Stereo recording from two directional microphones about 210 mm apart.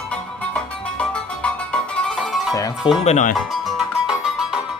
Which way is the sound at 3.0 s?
35° left (ahead or behind).